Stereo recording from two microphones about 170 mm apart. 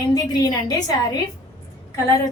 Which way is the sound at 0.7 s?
25° left (ahead or behind).